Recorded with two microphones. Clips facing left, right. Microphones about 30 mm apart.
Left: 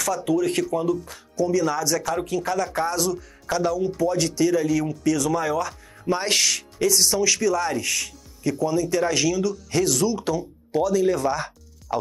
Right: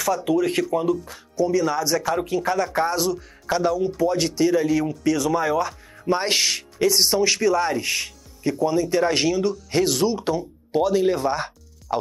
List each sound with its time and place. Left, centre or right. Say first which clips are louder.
0.0 s speech: right 2 dB; centre